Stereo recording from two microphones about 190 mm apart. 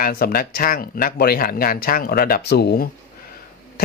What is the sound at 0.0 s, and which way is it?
Speech, 50° left (ahead or behind).